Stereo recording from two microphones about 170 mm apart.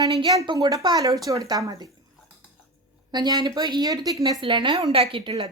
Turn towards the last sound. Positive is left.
turn(degrees=-30)  # may be behind; listen again after turning